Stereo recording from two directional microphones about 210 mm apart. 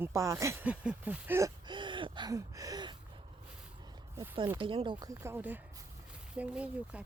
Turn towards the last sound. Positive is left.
turn(degrees=-5)  # may be behind; listen again after turning